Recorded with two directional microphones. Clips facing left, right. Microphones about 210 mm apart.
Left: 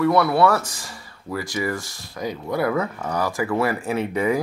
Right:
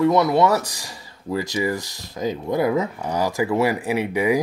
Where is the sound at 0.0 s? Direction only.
20° right (ahead or behind).